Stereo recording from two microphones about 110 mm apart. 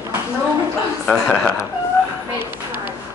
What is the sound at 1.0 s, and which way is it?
Speech, 5° left (ahead or behind).